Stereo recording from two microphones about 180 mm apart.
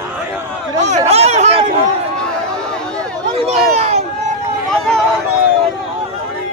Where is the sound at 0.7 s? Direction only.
40° right (ahead or behind).